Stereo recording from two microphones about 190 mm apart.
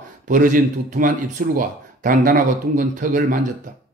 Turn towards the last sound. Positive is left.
turn(degrees=-45)  # may be behind; listen again after turning